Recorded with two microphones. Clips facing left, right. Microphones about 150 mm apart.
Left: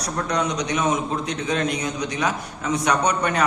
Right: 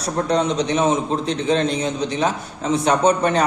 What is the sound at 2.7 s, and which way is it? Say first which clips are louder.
Speech: right 5 dB; 30° right (ahead or behind).